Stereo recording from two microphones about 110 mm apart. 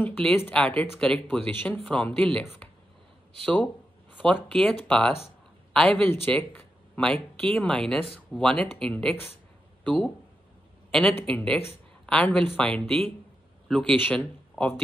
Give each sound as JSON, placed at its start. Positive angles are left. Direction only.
{"t": 0.0, "sound": "speech", "side_deg": 10}
{"t": 4.2, "sound": "a man's voice", "side_deg": 10}
{"t": 13.9, "sound": "speech", "side_deg": 15}